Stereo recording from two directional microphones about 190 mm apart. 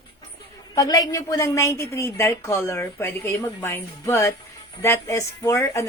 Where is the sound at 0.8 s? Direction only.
20° left (ahead or behind).